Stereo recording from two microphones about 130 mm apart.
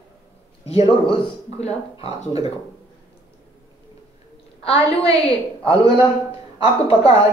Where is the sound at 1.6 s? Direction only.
55° left (ahead or behind).